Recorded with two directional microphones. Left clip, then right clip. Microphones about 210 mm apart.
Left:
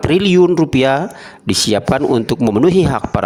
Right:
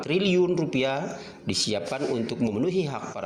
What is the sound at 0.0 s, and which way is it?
Speech, 55° left (ahead or behind).